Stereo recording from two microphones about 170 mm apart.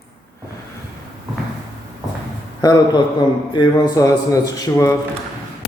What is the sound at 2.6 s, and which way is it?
A man's voice, 25° left (ahead or behind).